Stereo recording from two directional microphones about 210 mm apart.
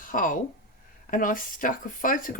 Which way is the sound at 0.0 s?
40° left (ahead or behind).